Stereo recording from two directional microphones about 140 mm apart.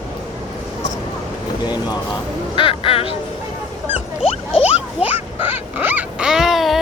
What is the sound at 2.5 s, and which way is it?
Crow, 40° left (ahead or behind).